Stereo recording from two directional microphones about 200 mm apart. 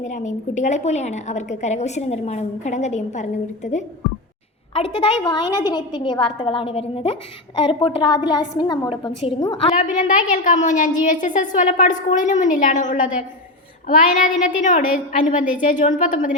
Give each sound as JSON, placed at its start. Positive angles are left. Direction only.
{"t": 0.0, "sound": "a woman's voice", "side_deg": 35}
{"t": 5.2, "sound": "a woman's voice", "side_deg": 20}
{"t": 9.7, "sound": "a woman's voice", "side_deg": 40}